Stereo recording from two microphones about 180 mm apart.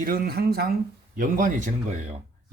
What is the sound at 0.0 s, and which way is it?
Speech, 55° right (ahead or behind).